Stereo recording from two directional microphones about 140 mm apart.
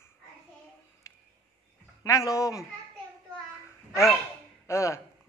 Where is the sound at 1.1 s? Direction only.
25° left (ahead or behind).